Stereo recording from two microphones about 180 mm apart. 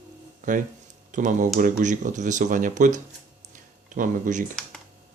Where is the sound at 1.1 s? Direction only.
45° right (ahead or behind).